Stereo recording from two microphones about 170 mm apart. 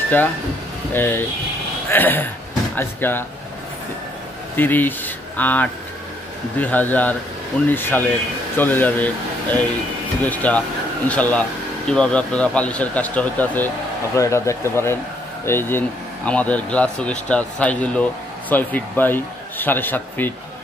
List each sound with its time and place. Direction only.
0.9 s a man's voice: 15° left (ahead or behind)
4.6 s a man's voice: 10° left (ahead or behind)